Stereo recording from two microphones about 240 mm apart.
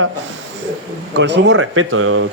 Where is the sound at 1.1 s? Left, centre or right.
Right.